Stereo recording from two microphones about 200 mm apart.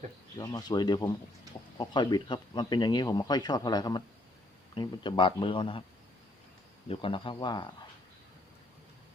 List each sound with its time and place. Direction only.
0.3 s speech: 20° left (ahead or behind)
6.8 s speech: 25° left (ahead or behind)